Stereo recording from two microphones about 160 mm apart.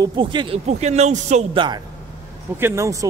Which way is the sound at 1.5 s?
30° right (ahead or behind).